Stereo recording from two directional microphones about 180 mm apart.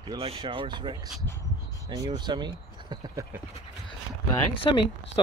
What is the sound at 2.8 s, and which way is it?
Horse, 25° right (ahead or behind).